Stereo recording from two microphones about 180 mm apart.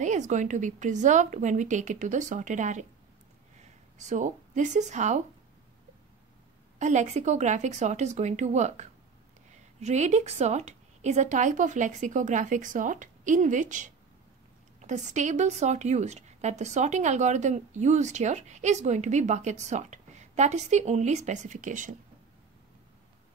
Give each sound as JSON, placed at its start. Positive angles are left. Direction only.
{"t": 0.0, "sound": "a woman's voice", "side_deg": -40}
{"t": 4.0, "sound": "a woman's voice", "side_deg": -45}
{"t": 6.8, "sound": "a woman's voice", "side_deg": -40}